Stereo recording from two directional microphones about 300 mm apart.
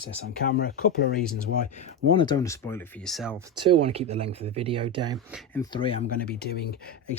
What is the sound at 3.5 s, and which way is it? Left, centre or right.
Speech, centre.